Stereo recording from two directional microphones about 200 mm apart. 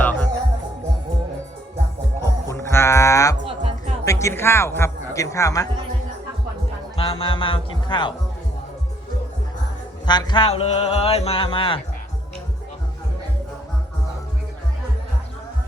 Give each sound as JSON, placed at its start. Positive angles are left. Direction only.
{"t": 0.0, "sound": "music", "side_deg": 10}
{"t": 2.2, "sound": "music", "side_deg": 15}
{"t": 4.0, "sound": "speech", "side_deg": 15}
{"t": 6.9, "sound": "speech", "side_deg": 30}
{"t": 10.1, "sound": "speech", "side_deg": 20}